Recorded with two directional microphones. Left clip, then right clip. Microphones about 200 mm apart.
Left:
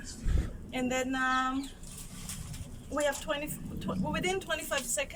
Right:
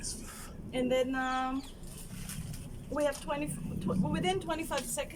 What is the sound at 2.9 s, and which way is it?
Speech, 10° right (ahead or behind).